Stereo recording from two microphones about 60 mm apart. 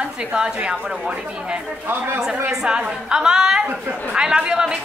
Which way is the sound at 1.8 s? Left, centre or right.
Right.